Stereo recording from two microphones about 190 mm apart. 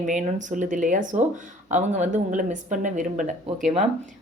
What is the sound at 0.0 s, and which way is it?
Speech, 40° right (ahead or behind).